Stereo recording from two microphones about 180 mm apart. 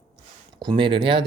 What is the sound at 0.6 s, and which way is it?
Speech, 30° right (ahead or behind).